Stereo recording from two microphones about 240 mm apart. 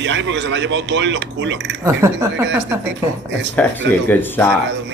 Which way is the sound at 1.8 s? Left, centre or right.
Centre.